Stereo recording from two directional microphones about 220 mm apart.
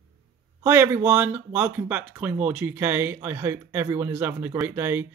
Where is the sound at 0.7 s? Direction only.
10° right (ahead or behind).